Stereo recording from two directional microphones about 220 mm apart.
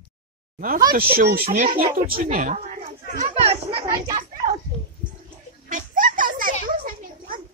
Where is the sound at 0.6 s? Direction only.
40° right (ahead or behind).